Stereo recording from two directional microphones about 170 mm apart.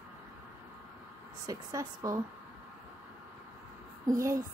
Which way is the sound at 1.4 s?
20° right (ahead or behind).